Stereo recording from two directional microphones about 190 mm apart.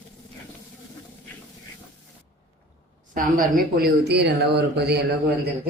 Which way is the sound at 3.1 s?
50° right (ahead or behind).